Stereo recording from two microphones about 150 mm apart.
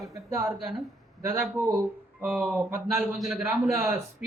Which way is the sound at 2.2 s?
Centre (ahead or behind).